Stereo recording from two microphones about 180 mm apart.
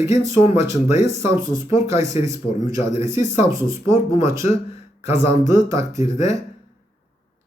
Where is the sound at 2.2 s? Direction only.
15° right (ahead or behind).